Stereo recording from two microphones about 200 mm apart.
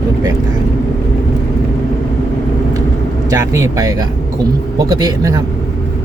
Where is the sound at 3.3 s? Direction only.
15° right (ahead or behind).